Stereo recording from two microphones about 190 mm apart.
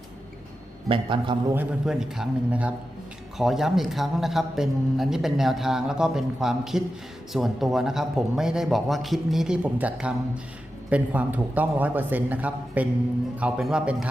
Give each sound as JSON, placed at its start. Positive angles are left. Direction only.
{"t": 0.9, "sound": "a man's voice", "side_deg": -25}
{"t": 1.5, "sound": "a man's voice", "side_deg": -5}